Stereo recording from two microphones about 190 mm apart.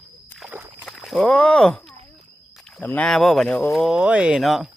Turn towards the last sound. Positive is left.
turn(degrees=0)  # may be behind; listen again after turning